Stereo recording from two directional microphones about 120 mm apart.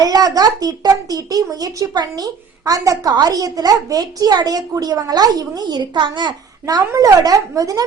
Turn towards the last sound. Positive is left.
turn(degrees=-30)  # may be behind; listen again after turning